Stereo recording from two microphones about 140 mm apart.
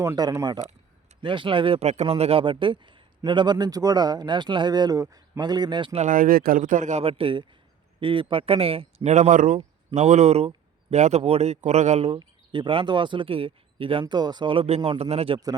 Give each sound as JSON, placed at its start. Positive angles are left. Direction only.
{"t": 0.0, "sound": "speech", "side_deg": -25}
{"t": 6.1, "sound": "speech", "side_deg": -85}
{"t": 7.0, "sound": "speech", "side_deg": -40}
{"t": 9.1, "sound": "speech", "side_deg": -65}
{"t": 14.0, "sound": "speech", "side_deg": -30}